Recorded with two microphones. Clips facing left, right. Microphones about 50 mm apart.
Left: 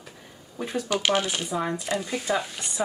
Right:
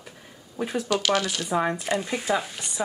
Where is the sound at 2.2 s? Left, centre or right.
Centre.